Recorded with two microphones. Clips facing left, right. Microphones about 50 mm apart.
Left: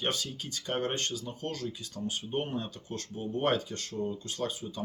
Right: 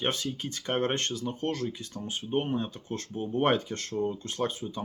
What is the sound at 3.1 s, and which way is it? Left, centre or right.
Speech, right.